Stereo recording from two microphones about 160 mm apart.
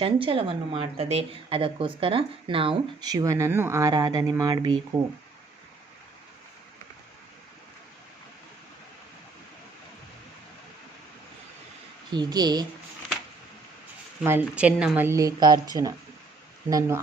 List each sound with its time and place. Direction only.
0.0 s a woman's voice: 35° right (ahead or behind)
12.1 s speech: 25° right (ahead or behind)
14.3 s a woman's voice: 10° right (ahead or behind)